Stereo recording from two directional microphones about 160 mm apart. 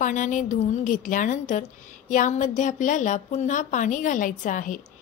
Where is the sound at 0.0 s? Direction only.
55° left (ahead or behind).